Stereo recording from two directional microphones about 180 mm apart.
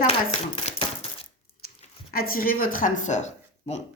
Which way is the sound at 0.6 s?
35° left (ahead or behind).